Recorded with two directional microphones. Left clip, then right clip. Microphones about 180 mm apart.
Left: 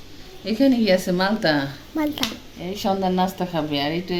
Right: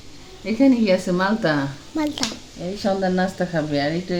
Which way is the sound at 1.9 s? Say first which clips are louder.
Even; centre (ahead or behind).